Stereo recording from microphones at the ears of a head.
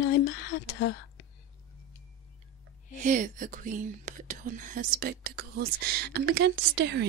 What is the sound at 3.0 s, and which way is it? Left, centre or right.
Speech, right.